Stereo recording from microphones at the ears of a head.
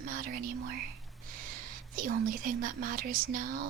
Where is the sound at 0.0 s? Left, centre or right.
Right.